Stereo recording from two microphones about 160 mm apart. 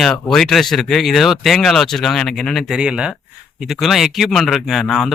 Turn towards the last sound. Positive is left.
turn(degrees=0)  # may be behind; listen again after turning